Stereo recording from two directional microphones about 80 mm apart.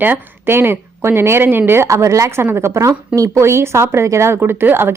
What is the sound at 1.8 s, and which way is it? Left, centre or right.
Speech, right.